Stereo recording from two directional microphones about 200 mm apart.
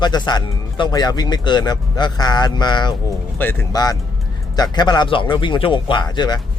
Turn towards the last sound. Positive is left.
turn(degrees=20)  # may be behind; listen again after turning